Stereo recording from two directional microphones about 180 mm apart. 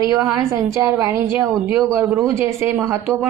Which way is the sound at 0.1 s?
15° right (ahead or behind).